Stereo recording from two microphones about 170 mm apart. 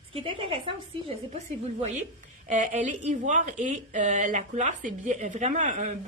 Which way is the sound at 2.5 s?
45° right (ahead or behind).